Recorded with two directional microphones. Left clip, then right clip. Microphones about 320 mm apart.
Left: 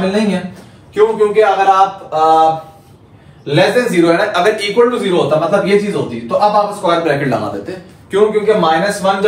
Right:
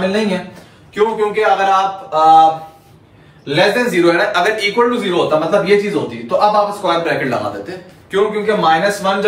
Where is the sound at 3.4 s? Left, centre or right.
Centre.